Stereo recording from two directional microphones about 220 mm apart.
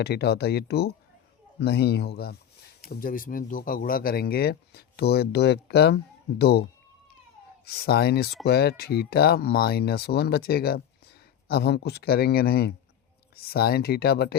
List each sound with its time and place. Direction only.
0.0 s speech: 45° left (ahead or behind)